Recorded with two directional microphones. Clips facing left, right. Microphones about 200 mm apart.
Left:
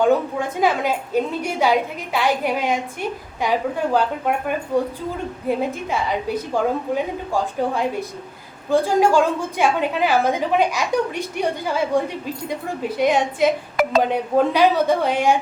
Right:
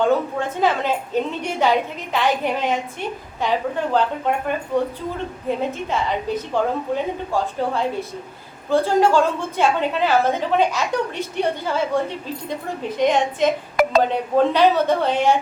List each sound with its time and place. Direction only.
0.0 s a woman's voice: 10° left (ahead or behind)